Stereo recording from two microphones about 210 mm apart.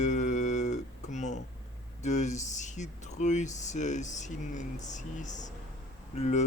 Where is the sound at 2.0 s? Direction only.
35° left (ahead or behind).